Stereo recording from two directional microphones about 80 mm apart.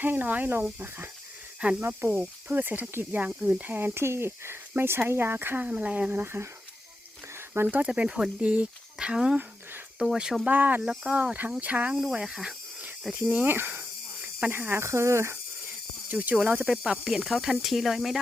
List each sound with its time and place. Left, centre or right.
0.0 s speech: right
5.6 s speech: centre
6.2 s speech: right
7.5 s speech: right
7.8 s speech: centre
10.4 s speech: right
10.8 s speech: centre
13.4 s speech: right
14.2 s cricket: centre
14.5 s speech: right
16.0 s speech: right; by 18.2 s centre